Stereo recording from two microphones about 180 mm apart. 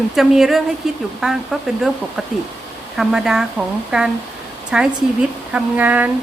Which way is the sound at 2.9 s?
5° right (ahead or behind).